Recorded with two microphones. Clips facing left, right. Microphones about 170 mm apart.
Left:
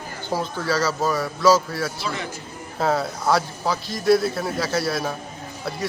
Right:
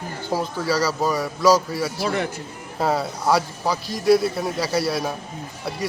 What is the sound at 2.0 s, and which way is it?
Speech, 55° right (ahead or behind).